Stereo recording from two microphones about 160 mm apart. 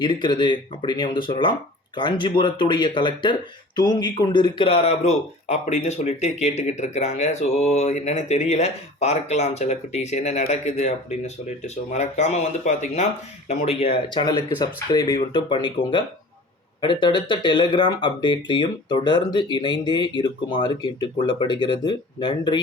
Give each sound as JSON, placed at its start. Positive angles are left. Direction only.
{"t": 0.0, "sound": "speech", "side_deg": 30}